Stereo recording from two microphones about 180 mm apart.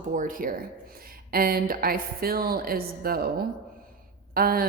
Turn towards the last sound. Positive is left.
turn(degrees=-55)  # may be behind; listen again after turning